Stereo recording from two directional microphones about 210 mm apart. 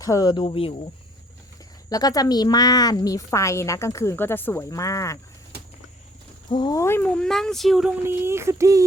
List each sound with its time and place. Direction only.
0.0 s speech: 15° left (ahead or behind)
1.9 s speech: 15° left (ahead or behind)
6.5 s speech: 20° left (ahead or behind); by 7.9 s centre (ahead or behind)
8.0 s a sound: 10° right (ahead or behind)